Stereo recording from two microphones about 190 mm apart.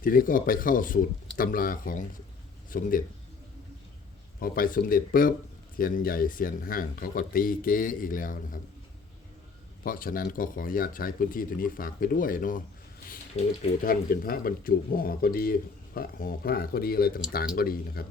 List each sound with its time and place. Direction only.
0.0 s speech: 50° left (ahead or behind)
4.4 s speech: 50° left (ahead or behind)
9.8 s speech: 50° left (ahead or behind)
13.4 s speech: 35° left (ahead or behind)
13.8 s speech: 50° left (ahead or behind)